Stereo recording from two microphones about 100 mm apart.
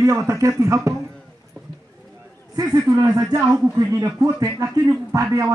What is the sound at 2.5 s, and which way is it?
Speech, 35° right (ahead or behind).